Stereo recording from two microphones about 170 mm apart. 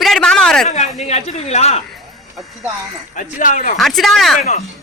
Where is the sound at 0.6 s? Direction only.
40° left (ahead or behind).